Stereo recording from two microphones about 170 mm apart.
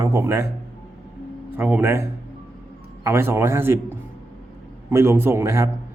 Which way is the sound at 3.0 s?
15° right (ahead or behind).